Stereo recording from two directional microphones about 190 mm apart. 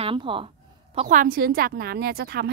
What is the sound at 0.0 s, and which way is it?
Speech, 25° right (ahead or behind).